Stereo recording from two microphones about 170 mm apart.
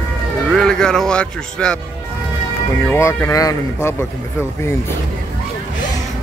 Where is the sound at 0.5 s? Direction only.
5° left (ahead or behind).